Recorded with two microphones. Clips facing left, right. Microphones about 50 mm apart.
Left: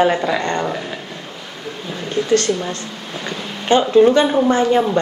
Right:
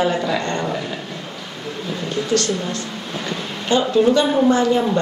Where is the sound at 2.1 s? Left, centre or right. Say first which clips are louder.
Left 4 dB; left.